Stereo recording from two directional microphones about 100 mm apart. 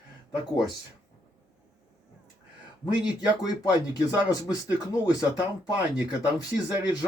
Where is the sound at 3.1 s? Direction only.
45° left (ahead or behind).